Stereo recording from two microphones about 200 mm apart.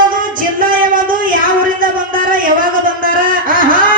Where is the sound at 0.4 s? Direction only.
45° right (ahead or behind).